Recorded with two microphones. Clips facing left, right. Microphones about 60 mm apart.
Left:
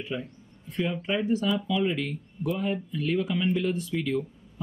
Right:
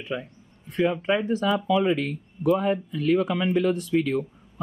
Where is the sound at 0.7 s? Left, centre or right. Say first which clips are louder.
Right 6 dB; right.